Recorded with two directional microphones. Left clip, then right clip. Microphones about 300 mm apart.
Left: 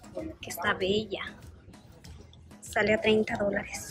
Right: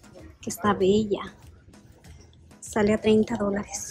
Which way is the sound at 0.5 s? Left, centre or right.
Centre.